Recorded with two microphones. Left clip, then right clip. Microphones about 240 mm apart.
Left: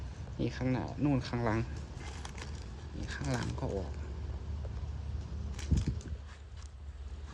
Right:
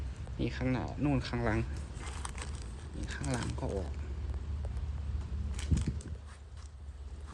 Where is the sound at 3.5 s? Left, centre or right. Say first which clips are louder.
Even; left.